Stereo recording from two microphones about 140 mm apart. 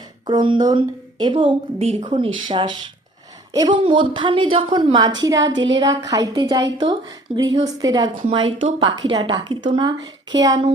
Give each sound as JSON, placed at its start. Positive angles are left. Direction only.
{"t": 0.3, "sound": "a woman's voice", "side_deg": -30}